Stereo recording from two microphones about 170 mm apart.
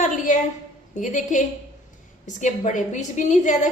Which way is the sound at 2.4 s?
45° left (ahead or behind).